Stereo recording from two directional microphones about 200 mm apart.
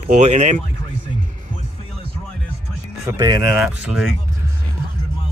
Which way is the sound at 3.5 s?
5° right (ahead or behind).